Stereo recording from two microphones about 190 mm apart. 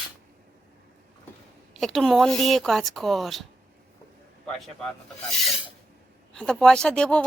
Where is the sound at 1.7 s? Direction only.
Centre (ahead or behind).